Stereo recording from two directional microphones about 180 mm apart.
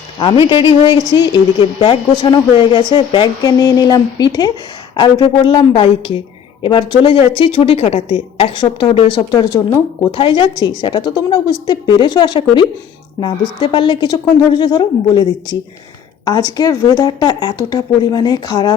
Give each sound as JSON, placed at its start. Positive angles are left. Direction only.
{"t": 0.2, "sound": "a woman's voice", "side_deg": 25}